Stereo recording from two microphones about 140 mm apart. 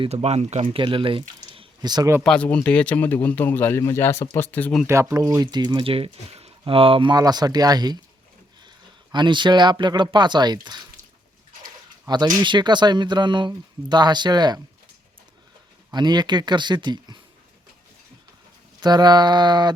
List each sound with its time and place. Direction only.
0.0 s speech: 50° right (ahead or behind)
1.5 s drip: 30° right (ahead or behind)
2.2 s speech: 5° left (ahead or behind)
4.9 s speech: 20° right (ahead or behind)
9.1 s speech: 35° right (ahead or behind)
12.0 s speech: 30° right (ahead or behind)
15.9 s speech: 30° right (ahead or behind)
18.8 s speech: 30° right (ahead or behind)